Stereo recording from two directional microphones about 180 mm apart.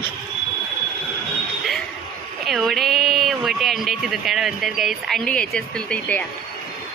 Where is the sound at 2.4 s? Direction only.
Centre (ahead or behind).